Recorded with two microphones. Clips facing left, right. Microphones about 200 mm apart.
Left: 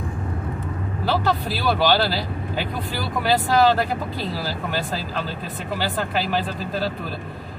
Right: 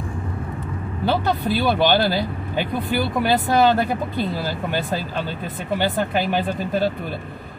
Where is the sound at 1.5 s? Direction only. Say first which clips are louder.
Right 3 dB; 20° right (ahead or behind).